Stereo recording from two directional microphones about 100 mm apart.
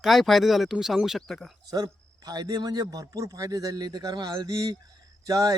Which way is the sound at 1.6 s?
40° right (ahead or behind).